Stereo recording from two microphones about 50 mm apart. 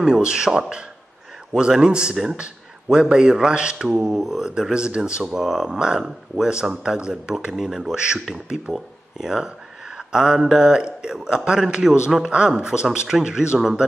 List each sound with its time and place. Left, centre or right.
0.0 s a man's voice: centre
4.0 s a man's voice: centre
5.2 s a man's voice: centre